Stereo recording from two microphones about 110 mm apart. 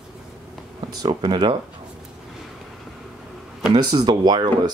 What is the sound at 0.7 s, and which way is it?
Speech, 40° right (ahead or behind).